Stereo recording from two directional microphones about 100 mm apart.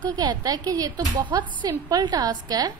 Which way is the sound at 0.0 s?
40° right (ahead or behind).